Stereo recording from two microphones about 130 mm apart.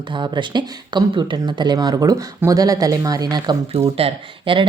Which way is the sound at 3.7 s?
45° right (ahead or behind).